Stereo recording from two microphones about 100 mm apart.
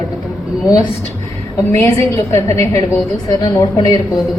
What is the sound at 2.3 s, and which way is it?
Speech, 30° left (ahead or behind).